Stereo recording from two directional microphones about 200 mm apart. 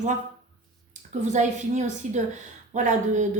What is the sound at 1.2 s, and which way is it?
A woman's voice, 35° right (ahead or behind).